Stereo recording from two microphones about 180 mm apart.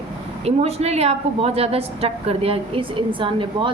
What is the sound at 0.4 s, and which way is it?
A woman's voice, 35° right (ahead or behind).